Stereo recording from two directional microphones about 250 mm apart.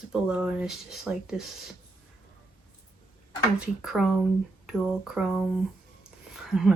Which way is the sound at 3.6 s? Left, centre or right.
Centre.